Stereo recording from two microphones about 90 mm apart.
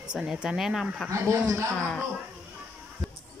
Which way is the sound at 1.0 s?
35° right (ahead or behind).